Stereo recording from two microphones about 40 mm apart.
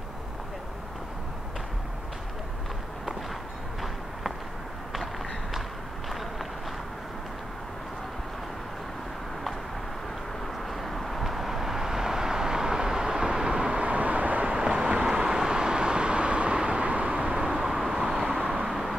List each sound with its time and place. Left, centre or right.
4.9 s run: centre
6.0 s walk: centre
10.7 s vehicle: centre; by 14.5 s right
14.5 s vehicle: right
17.4 s vehicle: centre
18.4 s vehicle: right
18.7 s vehicle: centre